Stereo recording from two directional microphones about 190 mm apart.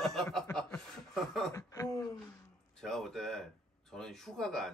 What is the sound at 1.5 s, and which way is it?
Speech, 15° left (ahead or behind).